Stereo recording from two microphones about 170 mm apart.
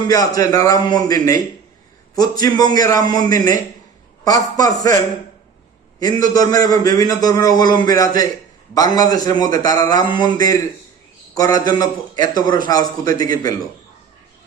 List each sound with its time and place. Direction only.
0.1 s a man's voice: 20° left (ahead or behind)
6.0 s a man's voice: 20° left (ahead or behind)